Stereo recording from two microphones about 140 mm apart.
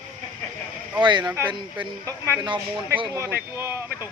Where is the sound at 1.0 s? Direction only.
35° right (ahead or behind).